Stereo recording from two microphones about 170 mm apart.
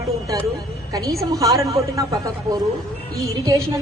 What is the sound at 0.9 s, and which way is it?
A woman's voice, 20° right (ahead or behind).